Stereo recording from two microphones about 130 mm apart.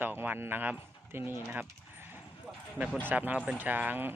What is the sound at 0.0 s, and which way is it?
Speech, 15° right (ahead or behind).